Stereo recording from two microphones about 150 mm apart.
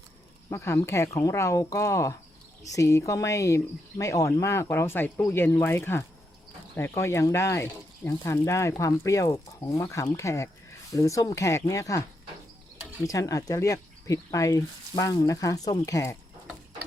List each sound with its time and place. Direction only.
0.5 s speech: 20° left (ahead or behind)
13.1 s speech: 20° left (ahead or behind)